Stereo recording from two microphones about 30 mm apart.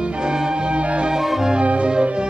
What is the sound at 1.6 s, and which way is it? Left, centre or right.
Music, right.